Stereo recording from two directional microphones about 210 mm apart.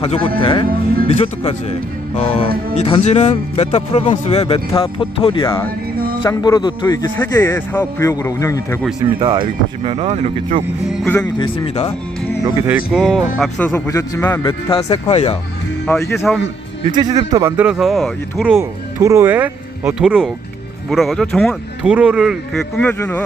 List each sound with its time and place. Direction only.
0.0 s a man's voice: 25° left (ahead or behind)
9.0 s speech: 20° right (ahead or behind)
11.0 s speech: 5° left (ahead or behind)
11.3 s speech: 25° left (ahead or behind)
12.6 s speech: 5° right (ahead or behind); by 14.4 s 15° left (ahead or behind)
14.4 s speech: 25° left (ahead or behind)
15.9 s a man's voice: 10° left (ahead or behind)
16.9 s speech: 20° right (ahead or behind); by 23.2 s 10° left (ahead or behind)